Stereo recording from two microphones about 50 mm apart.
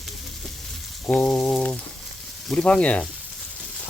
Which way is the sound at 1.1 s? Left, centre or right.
Left.